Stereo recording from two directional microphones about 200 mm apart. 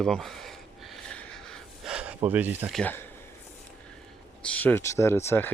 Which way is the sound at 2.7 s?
10° left (ahead or behind).